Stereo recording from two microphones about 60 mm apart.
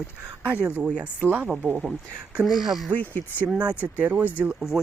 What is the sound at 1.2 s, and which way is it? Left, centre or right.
Speech, right.